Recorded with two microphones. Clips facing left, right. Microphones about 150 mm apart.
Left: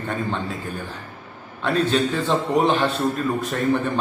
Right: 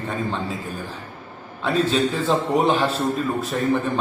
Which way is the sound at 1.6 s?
Centre (ahead or behind).